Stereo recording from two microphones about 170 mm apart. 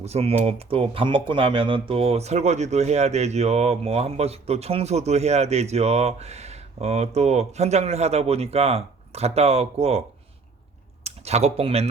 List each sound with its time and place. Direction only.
0.0 s speech: 35° right (ahead or behind)
11.0 s speech: 40° right (ahead or behind)